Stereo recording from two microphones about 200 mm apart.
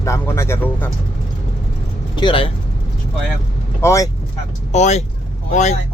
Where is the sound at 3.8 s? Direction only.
15° left (ahead or behind).